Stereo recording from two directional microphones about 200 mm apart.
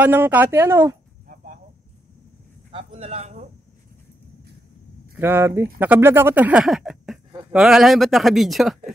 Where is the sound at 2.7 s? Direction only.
30° right (ahead or behind).